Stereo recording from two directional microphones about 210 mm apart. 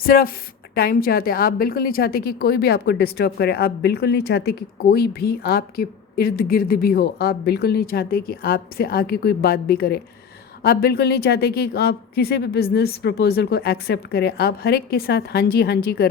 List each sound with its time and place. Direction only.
0.0 s a woman's voice: 45° left (ahead or behind)